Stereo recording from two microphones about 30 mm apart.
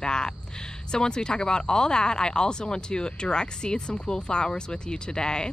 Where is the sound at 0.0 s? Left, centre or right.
Left.